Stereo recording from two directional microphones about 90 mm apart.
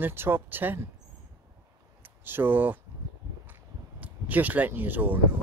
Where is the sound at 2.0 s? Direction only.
25° right (ahead or behind).